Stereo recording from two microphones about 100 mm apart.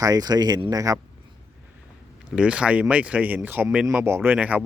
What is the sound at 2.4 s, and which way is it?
Speech, 10° right (ahead or behind).